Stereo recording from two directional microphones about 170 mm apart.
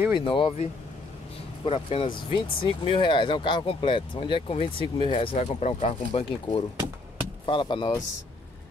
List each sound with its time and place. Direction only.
0.2 s speech: 30° left (ahead or behind)